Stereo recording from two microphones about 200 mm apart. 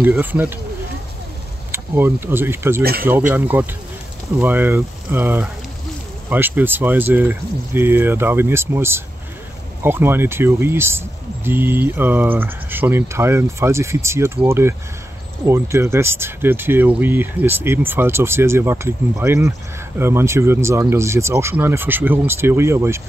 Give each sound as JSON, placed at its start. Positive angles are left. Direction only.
{"t": 0.0, "sound": "speech", "side_deg": -10}
{"t": 1.7, "sound": "speech", "side_deg": -10}
{"t": 2.8, "sound": "speech", "side_deg": -50}
{"t": 3.1, "sound": "speech", "side_deg": -10}